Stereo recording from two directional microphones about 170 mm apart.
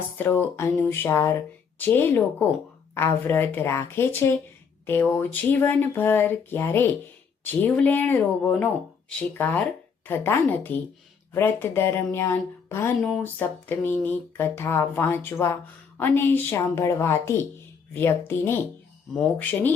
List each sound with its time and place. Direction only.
0.2 s speech: 15° left (ahead or behind)
13.0 s speech: centre (ahead or behind)
13.7 s speech: 10° left (ahead or behind)